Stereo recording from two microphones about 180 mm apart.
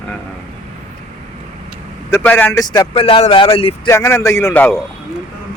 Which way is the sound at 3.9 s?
15° left (ahead or behind).